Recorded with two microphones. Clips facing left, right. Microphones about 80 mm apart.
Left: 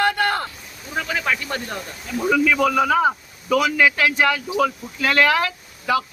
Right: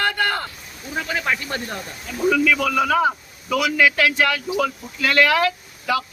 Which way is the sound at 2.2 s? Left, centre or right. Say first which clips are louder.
Even; centre.